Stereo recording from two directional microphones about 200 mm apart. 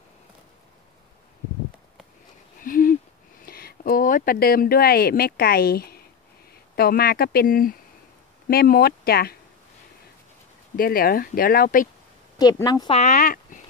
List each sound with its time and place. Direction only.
2.6 s a sound: 45° left (ahead or behind)
6.7 s speech: 50° left (ahead or behind)
10.8 s speech: 45° left (ahead or behind)
12.4 s a woman's voice: 20° left (ahead or behind)
12.9 s speech: 40° left (ahead or behind)